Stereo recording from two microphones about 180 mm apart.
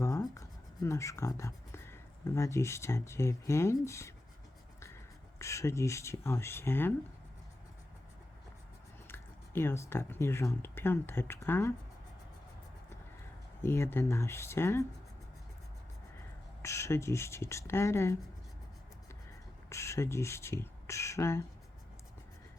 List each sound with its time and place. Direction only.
0.0 s speech: 20° left (ahead or behind)
5.4 s speech: 15° left (ahead or behind)
9.0 s speech: 10° left (ahead or behind)
13.6 s speech: 15° left (ahead or behind)
16.6 s speech: 15° left (ahead or behind)
19.7 s speech: 15° left (ahead or behind)